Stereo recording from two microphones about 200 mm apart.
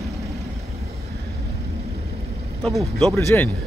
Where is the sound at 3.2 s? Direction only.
15° left (ahead or behind).